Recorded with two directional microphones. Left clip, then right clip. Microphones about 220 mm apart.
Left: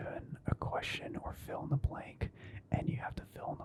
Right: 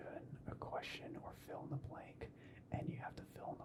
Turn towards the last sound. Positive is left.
turn(degrees=35)  # may be behind; listen again after turning